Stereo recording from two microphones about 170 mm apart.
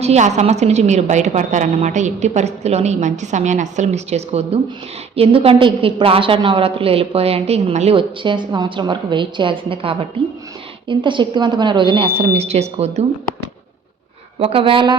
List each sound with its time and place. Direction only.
0.0 s a woman's voice: 40° right (ahead or behind)
14.3 s a woman's voice: 35° right (ahead or behind)